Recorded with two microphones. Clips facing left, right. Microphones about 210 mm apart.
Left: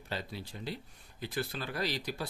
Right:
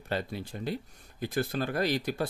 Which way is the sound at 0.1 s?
55° right (ahead or behind).